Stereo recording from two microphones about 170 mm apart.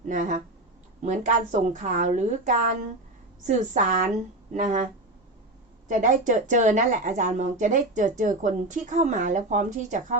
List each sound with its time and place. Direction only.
0.1 s speech: 50° right (ahead or behind)
5.9 s speech: 50° right (ahead or behind)